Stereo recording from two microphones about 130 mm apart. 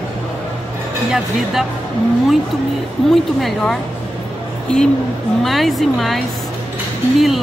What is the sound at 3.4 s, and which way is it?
Speech, centre (ahead or behind).